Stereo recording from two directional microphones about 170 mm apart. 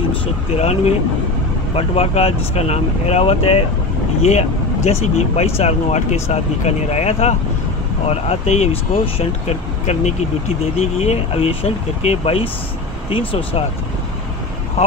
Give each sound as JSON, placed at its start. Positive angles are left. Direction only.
{"t": 0.6, "sound": "speech", "side_deg": 40}